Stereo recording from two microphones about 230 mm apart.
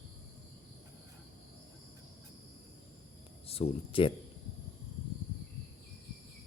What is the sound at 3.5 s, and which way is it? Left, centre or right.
Speech, left.